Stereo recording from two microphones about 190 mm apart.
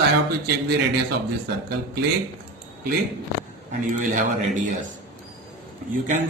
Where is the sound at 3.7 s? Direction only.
45° right (ahead or behind).